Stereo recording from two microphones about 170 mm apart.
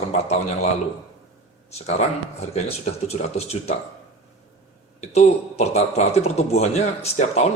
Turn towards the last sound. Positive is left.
turn(degrees=40)  # may be behind; listen again after turning